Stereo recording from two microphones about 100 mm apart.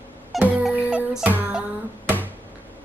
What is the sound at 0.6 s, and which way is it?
Speech, 5° right (ahead or behind).